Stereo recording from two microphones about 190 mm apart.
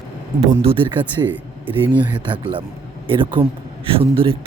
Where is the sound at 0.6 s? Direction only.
30° right (ahead or behind).